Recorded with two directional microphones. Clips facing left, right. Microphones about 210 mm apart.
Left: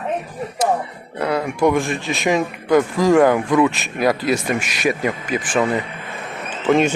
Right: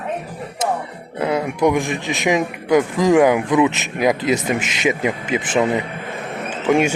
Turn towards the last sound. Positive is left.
turn(degrees=-10)  # may be behind; listen again after turning